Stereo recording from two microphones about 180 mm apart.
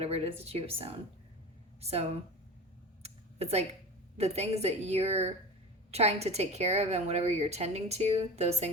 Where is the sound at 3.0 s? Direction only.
35° right (ahead or behind).